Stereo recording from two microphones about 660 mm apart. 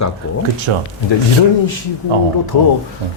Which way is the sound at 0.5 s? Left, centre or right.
Right.